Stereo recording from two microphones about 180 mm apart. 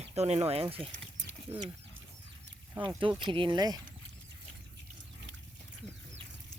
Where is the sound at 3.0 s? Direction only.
25° right (ahead or behind).